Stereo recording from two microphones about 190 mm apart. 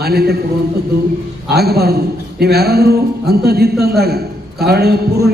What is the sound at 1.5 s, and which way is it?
A man's voice, 55° right (ahead or behind).